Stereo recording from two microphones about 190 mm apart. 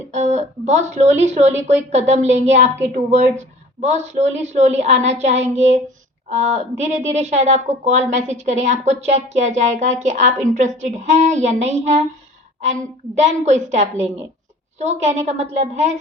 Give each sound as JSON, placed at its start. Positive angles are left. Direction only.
{"t": 0.1, "sound": "speech", "side_deg": -40}
{"t": 13.1, "sound": "speech", "side_deg": -35}